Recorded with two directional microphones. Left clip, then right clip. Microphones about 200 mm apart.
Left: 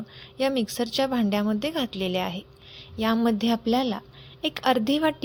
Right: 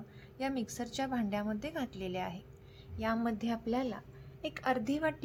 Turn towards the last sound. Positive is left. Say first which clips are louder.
# left 10 dB
turn(degrees=40)  # may be behind; listen again after turning